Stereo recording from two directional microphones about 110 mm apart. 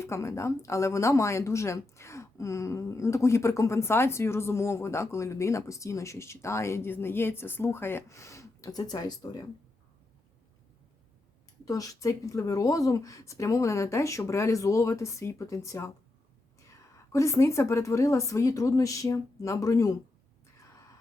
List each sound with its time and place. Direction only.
0.0 s a woman's voice: 25° left (ahead or behind)
11.6 s a woman's voice: 30° left (ahead or behind)
17.1 s a woman's voice: 30° left (ahead or behind)